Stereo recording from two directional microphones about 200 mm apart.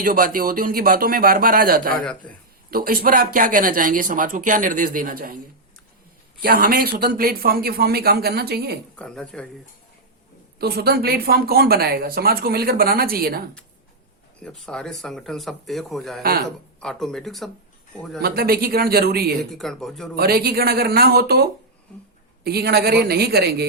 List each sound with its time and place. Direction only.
0.0 s speech: 45° right (ahead or behind)
6.4 s speech: 50° right (ahead or behind)
9.0 s speech: 5° left (ahead or behind)
10.6 s speech: 50° right (ahead or behind)
14.3 s speech: 5° left (ahead or behind)
18.2 s speech: 50° right (ahead or behind)
19.4 s speech: centre (ahead or behind)
20.1 s speech: 50° right (ahead or behind)